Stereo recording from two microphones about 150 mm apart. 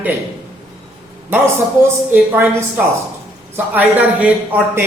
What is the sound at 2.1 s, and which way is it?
A man's voice, 15° right (ahead or behind).